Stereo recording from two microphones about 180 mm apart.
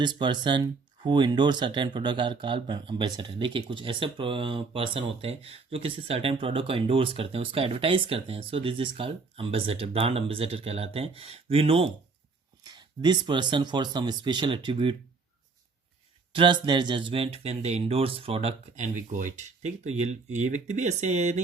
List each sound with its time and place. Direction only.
0.0 s speech: 25° right (ahead or behind)
16.3 s speech: 25° right (ahead or behind)